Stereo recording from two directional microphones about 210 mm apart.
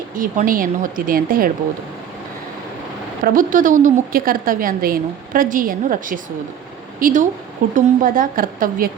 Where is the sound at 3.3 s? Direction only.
40° right (ahead or behind).